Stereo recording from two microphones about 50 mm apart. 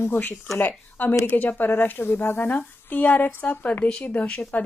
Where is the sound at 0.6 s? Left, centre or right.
Left.